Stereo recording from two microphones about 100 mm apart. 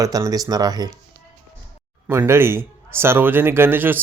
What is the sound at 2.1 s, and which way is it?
A man's voice, 25° right (ahead or behind).